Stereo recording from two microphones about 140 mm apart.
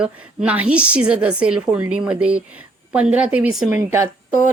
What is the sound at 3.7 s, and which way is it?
Speech, 20° right (ahead or behind).